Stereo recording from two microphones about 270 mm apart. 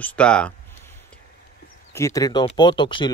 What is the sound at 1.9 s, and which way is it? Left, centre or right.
Speech, centre.